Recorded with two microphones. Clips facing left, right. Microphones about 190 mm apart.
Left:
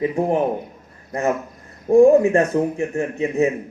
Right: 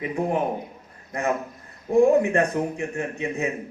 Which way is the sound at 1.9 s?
45° left (ahead or behind).